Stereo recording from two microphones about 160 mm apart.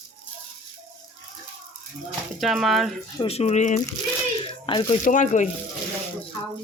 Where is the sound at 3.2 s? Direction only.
40° left (ahead or behind).